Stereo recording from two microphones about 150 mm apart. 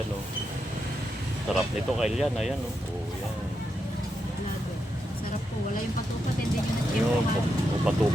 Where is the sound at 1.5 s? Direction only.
5° right (ahead or behind).